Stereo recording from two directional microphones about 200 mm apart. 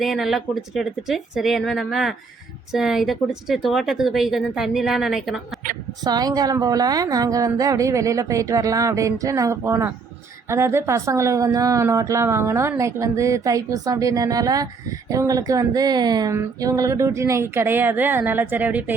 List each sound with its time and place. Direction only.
0.0 s speech: centre (ahead or behind)
6.1 s a woman's voice: 20° right (ahead or behind)